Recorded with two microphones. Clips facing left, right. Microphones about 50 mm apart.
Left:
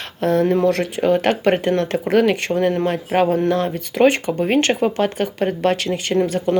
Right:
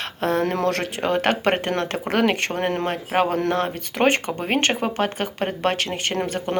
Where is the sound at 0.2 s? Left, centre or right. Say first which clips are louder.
Left 5 dB; right.